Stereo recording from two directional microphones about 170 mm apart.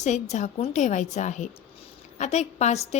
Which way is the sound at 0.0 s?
45° left (ahead or behind).